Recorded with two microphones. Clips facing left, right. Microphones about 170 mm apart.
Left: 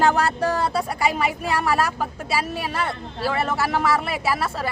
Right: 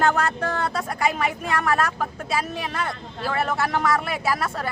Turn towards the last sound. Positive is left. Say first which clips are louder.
# left 1 dB
turn(degrees=5)  # may be behind; listen again after turning